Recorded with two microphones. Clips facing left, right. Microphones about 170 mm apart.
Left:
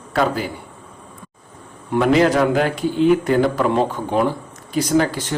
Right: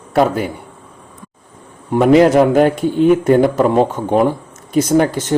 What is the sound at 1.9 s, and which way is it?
Speech, 45° right (ahead or behind).